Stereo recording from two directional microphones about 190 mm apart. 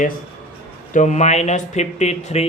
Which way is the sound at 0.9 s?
40° left (ahead or behind).